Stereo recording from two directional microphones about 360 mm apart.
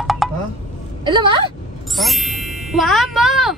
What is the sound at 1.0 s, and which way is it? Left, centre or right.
Speech, centre.